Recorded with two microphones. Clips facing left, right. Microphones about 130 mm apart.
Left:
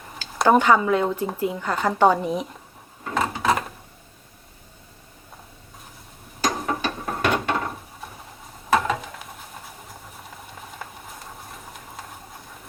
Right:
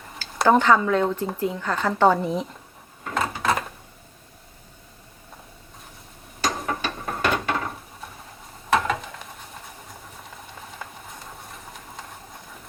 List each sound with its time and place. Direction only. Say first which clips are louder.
0.4 s speech: left 1 dB; 10° left (ahead or behind)
3.0 s drawer open or close: left 2 dB; 5° left (ahead or behind)
6.4 s ratchet: left 2 dB; 5° left (ahead or behind)
8.0 s a sound: left 1 dB; centre (ahead or behind)
8.7 s stir: left 1 dB; centre (ahead or behind)